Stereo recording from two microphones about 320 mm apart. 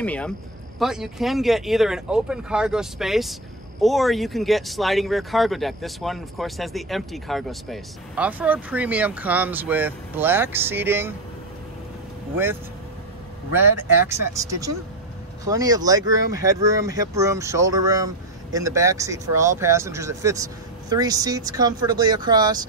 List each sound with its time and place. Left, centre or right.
0.0 s speech: centre
14.0 s speech: centre